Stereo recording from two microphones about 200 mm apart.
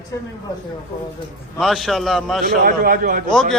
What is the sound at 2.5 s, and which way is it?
Speech, 45° right (ahead or behind).